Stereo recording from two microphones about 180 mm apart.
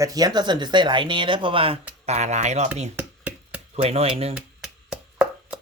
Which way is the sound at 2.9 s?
10° right (ahead or behind).